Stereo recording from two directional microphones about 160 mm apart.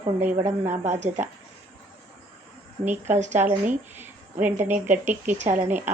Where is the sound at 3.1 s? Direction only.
45° right (ahead or behind).